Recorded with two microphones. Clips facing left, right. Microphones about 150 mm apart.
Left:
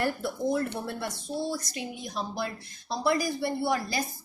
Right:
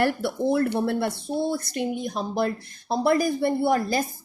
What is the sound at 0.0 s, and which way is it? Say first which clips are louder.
A woman's voice: right 5 dB; 75° right (ahead or behind).